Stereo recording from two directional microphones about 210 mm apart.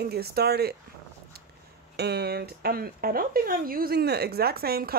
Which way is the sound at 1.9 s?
50° right (ahead or behind).